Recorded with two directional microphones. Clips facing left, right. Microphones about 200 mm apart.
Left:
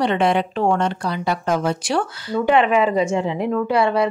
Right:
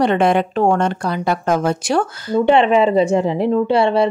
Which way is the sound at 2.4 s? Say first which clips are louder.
Right 3 dB; 25° right (ahead or behind).